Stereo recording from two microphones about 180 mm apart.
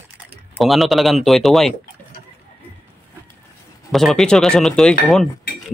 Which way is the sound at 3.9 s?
Centre (ahead or behind).